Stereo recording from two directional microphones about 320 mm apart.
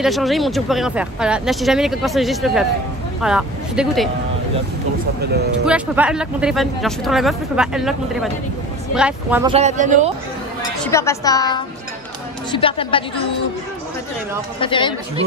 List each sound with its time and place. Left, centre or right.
0.0 s speech: centre
5.7 s speech: centre
9.5 s speech: right
10.9 s a woman's voice: centre
14.6 s a woman's voice: centre